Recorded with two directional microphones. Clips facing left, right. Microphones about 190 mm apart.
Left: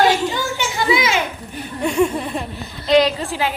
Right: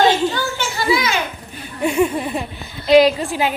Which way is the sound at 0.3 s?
15° left (ahead or behind).